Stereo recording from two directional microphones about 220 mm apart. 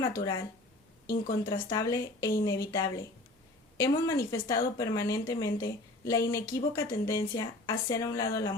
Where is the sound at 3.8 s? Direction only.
15° left (ahead or behind).